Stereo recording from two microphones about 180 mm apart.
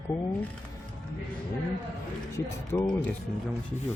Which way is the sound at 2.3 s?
15° left (ahead or behind).